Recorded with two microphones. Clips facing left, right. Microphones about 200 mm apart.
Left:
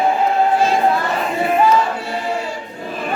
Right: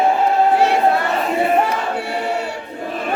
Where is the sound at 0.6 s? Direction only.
65° right (ahead or behind).